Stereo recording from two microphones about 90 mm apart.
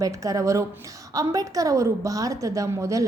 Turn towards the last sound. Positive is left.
turn(degrees=-35)  # may be behind; listen again after turning